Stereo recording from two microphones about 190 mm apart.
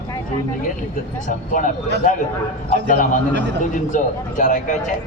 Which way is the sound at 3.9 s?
45° left (ahead or behind).